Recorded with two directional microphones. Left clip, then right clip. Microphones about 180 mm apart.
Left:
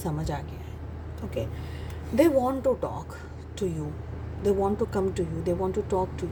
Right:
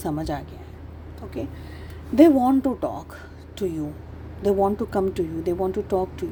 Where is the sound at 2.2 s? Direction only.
40° right (ahead or behind).